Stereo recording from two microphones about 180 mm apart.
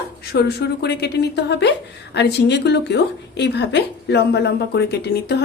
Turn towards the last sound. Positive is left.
turn(degrees=65)  # may be behind; listen again after turning